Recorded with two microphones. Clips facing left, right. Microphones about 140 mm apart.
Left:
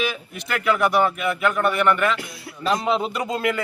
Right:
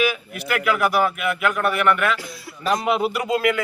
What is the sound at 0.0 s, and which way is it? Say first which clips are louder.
A man's voice: right 4 dB; 5° right (ahead or behind).